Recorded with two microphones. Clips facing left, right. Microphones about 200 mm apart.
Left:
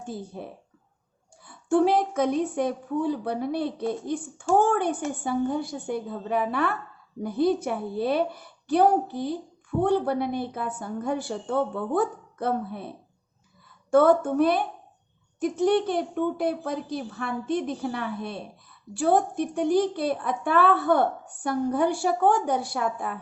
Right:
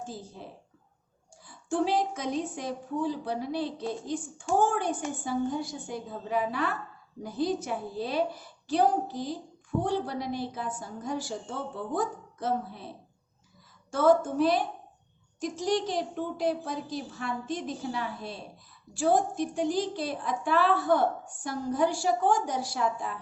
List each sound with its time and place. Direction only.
0.0 s a woman's voice: 60° left (ahead or behind)